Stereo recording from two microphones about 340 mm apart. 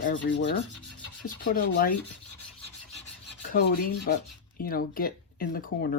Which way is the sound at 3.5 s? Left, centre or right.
Left.